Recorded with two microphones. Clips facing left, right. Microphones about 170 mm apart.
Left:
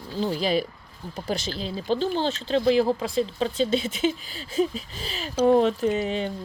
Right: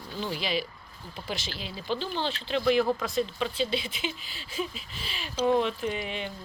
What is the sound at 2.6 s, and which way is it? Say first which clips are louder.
Speech: left 3 dB; 30° left (ahead or behind).